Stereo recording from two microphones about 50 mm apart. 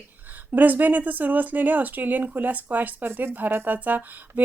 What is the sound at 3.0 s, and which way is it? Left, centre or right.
Speech, right.